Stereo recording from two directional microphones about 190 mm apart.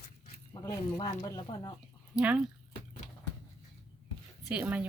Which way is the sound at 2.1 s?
5° right (ahead or behind).